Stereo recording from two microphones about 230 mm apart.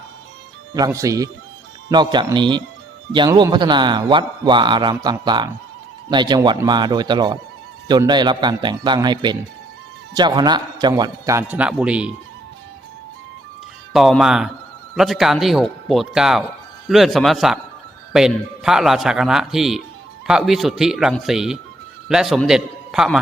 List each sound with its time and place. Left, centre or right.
0.7 s a man's voice: centre
13.9 s speech: centre